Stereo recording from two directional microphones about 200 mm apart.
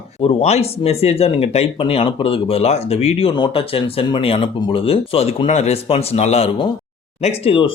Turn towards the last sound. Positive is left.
turn(degrees=25)  # may be behind; listen again after turning